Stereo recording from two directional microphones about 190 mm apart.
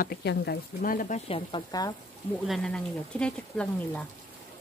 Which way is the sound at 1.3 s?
25° left (ahead or behind).